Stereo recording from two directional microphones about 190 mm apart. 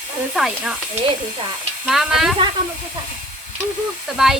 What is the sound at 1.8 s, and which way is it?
Speech, 5° right (ahead or behind).